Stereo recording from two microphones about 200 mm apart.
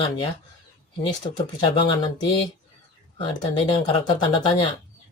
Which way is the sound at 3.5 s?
25° left (ahead or behind).